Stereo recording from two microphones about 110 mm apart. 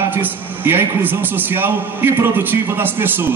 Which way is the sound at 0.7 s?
20° right (ahead or behind).